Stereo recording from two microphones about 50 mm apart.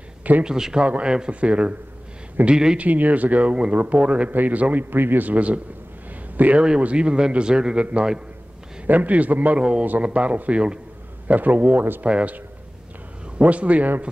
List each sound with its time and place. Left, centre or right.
0.4 s a man's voice: centre
2.8 s a man's voice: right
4.9 s a man's voice: right
8.8 s speech: right
9.6 s a man's voice: right
13.4 s a man's voice: right